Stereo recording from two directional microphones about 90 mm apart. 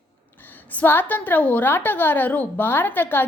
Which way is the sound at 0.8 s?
20° left (ahead or behind).